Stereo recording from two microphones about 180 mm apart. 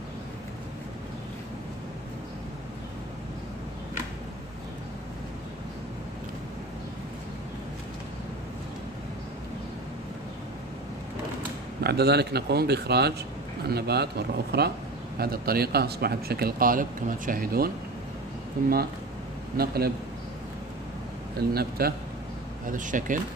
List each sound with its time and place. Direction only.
11.8 s speech: 65° right (ahead or behind)
21.4 s speech: 60° right (ahead or behind)
22.7 s speech: 45° right (ahead or behind)